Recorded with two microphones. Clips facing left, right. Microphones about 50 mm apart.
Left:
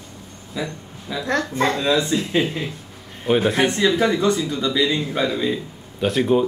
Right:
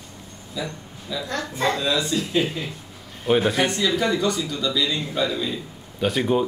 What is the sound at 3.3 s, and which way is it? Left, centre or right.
Speech, centre.